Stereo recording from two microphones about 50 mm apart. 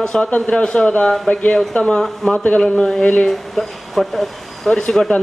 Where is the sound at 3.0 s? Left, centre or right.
Left.